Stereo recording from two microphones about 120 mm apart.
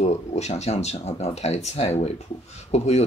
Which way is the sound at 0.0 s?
70° left (ahead or behind).